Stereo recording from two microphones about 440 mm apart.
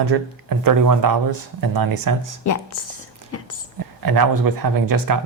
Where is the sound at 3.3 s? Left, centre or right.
Left.